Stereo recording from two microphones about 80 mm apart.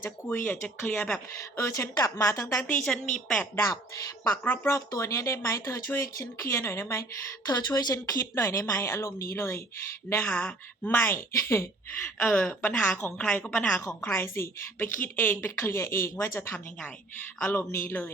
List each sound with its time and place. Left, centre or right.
0.3 s a woman's voice: left
1.5 s a woman's voice: left
2.8 s a woman's voice: centre
3.3 s a woman's voice: left
4.9 s a woman's voice: left
7.4 s speech: left
10.1 s a woman's voice: centre; by 11.7 s left
12.2 s a woman's voice: left
13.1 s a woman's voice: centre